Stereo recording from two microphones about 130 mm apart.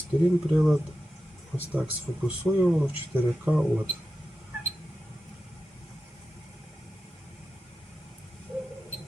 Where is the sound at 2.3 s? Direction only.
5° right (ahead or behind).